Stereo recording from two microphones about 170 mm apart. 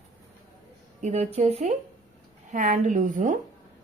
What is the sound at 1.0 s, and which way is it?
A woman's voice, 40° right (ahead or behind).